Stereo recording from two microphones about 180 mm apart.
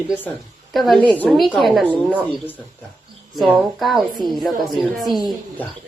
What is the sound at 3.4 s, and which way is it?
A woman's voice, centre (ahead or behind).